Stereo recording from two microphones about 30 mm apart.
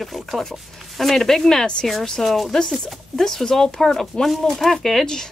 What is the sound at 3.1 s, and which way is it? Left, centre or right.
Speech, centre.